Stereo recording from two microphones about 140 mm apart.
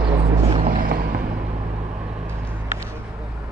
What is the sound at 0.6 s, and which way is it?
Vehicle, 85° right.